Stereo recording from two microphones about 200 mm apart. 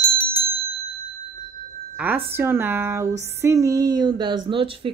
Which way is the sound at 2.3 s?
10° right (ahead or behind).